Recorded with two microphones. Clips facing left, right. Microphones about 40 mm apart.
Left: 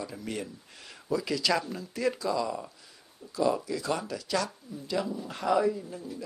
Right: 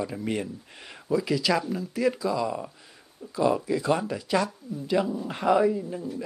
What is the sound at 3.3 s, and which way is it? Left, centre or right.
Speech, centre.